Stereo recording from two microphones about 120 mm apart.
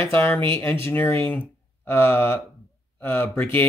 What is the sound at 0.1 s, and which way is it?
Speech, 20° left (ahead or behind).